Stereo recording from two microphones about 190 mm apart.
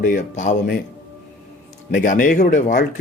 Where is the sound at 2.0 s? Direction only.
45° left (ahead or behind).